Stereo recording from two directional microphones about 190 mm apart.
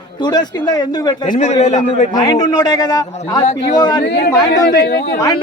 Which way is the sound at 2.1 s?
20° left (ahead or behind).